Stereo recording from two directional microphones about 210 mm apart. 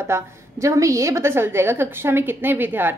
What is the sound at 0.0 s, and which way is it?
A woman's voice, 15° right (ahead or behind).